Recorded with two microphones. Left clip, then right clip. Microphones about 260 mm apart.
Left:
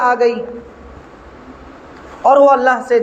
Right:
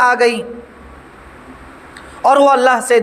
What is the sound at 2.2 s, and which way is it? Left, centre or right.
Speech, right.